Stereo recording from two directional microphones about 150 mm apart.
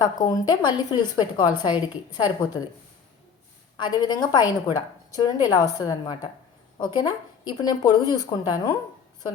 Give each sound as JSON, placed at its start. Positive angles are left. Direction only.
{"t": 0.0, "sound": "a woman's voice", "side_deg": 25}
{"t": 3.8, "sound": "a woman's voice", "side_deg": 30}